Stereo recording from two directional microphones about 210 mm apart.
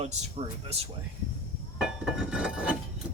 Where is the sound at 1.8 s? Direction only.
Centre (ahead or behind).